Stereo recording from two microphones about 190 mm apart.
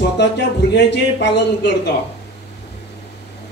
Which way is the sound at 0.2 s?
65° left (ahead or behind).